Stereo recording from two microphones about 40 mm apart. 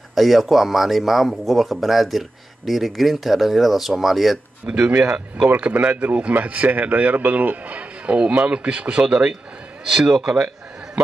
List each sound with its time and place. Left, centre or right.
0.1 s speech: centre
4.6 s speech: right